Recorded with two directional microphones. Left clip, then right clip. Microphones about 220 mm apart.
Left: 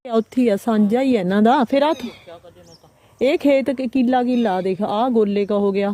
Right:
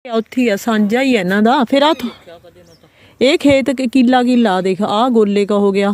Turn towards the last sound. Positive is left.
turn(degrees=-20)  # may be behind; listen again after turning